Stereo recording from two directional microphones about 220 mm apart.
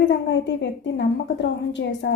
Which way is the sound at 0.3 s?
55° left (ahead or behind).